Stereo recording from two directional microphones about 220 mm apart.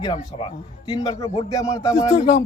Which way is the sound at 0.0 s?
20° left (ahead or behind).